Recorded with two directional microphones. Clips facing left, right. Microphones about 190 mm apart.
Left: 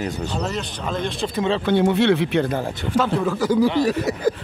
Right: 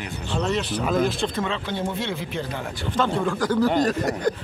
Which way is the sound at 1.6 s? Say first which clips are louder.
Left 11 dB; 70° left (ahead or behind).